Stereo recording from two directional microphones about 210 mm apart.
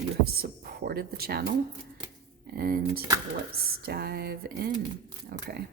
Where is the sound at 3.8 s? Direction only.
50° right (ahead or behind).